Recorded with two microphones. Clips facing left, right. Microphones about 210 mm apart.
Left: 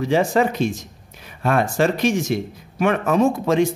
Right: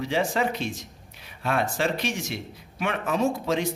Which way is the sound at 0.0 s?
45° left (ahead or behind).